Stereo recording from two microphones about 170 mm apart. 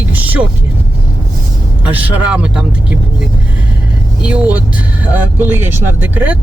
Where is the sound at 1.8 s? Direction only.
10° right (ahead or behind).